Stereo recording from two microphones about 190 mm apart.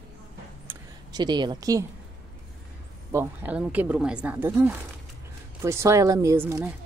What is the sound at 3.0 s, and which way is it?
Speech, 10° right (ahead or behind).